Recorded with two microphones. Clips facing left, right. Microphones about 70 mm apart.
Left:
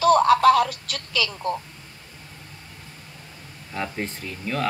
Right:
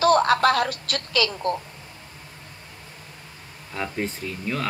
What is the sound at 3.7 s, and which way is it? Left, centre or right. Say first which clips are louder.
Speech: right 1 dB; centre.